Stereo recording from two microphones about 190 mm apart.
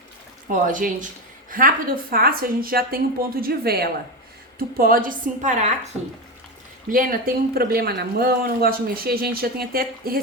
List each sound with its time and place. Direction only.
0.5 s speech: 45° right (ahead or behind)
6.9 s speech: 45° right (ahead or behind)